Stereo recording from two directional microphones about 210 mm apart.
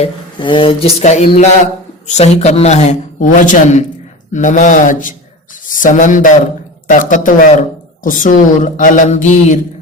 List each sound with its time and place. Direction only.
0.0 s a man's voice: 25° left (ahead or behind)